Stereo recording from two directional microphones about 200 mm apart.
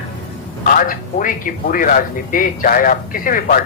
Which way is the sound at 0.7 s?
40° left (ahead or behind).